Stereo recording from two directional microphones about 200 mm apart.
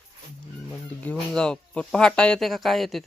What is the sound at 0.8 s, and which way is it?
Speech, 10° left (ahead or behind).